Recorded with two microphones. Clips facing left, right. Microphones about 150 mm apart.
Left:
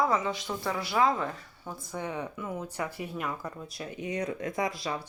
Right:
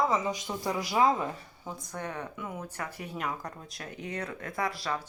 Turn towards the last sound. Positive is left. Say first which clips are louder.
# left 1 dB
turn(degrees=15)  # may be behind; listen again after turning